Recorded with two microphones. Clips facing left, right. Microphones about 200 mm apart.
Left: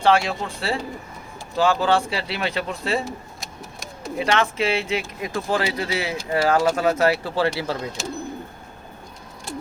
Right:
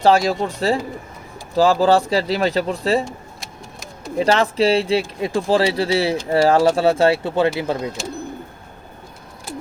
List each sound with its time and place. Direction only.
0.0 s speech: 35° right (ahead or behind)
3.0 s a sound: centre (ahead or behind)
4.2 s speech: 35° right (ahead or behind); by 7.8 s 20° right (ahead or behind)
8.0 s speech: centre (ahead or behind)